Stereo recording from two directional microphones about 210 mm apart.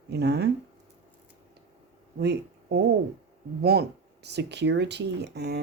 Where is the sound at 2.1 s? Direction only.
50° right (ahead or behind).